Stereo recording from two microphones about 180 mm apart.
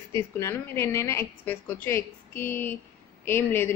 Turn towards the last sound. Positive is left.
turn(degrees=15)  # may be behind; listen again after turning